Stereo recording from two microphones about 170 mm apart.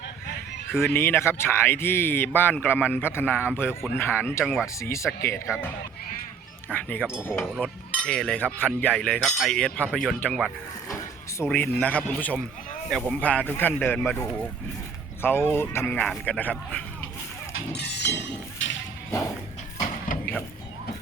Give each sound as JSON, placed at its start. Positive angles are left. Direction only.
{"t": 0.8, "sound": "speech", "side_deg": 15}
{"t": 4.8, "sound": "speech", "side_deg": 15}
{"t": 5.5, "sound": "cutlery", "side_deg": -5}
{"t": 6.7, "sound": "speech", "side_deg": 10}
{"t": 7.3, "sound": "cutlery", "side_deg": 0}
{"t": 10.8, "sound": "vehicle", "side_deg": 20}
{"t": 11.4, "sound": "speech", "side_deg": 10}
{"t": 17.7, "sound": "chink", "side_deg": 80}
{"t": 18.6, "sound": "music", "side_deg": 90}
{"t": 20.1, "sound": "a sound", "side_deg": 50}